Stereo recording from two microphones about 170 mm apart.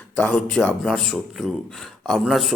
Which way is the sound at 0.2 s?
5° left (ahead or behind).